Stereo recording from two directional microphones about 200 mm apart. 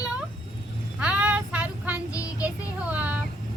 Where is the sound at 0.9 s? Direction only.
5° right (ahead or behind).